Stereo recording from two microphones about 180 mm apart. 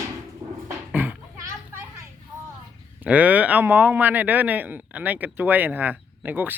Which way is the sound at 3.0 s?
10° right (ahead or behind).